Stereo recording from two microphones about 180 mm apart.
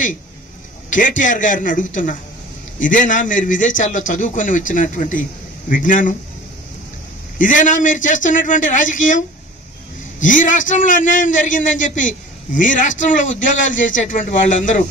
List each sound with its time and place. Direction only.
0.8 s a man's voice: 45° left (ahead or behind)
7.3 s a man's voice: 45° left (ahead or behind)
10.2 s a man's voice: 45° left (ahead or behind)
13.6 s a man's voice: 90° left
13.9 s a man's voice: 45° left (ahead or behind)